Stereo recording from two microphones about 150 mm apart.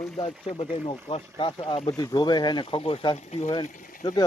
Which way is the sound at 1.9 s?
25° left (ahead or behind).